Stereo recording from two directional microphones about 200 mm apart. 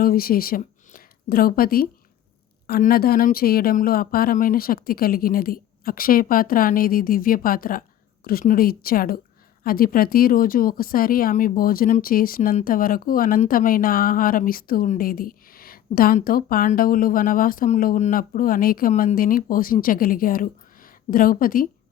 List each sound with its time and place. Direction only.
0.0 s speech: 45° left (ahead or behind)